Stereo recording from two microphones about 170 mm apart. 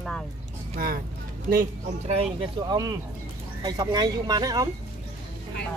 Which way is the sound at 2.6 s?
25° right (ahead or behind).